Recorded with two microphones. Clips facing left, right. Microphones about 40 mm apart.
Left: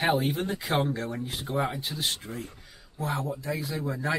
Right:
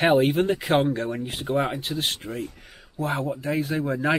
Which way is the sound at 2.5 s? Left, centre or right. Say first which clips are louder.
Right 6 dB; right.